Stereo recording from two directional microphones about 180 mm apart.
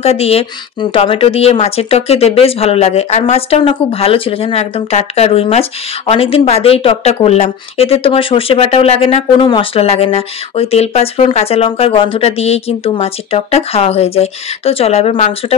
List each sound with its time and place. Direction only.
0.0 s speech: 35° left (ahead or behind)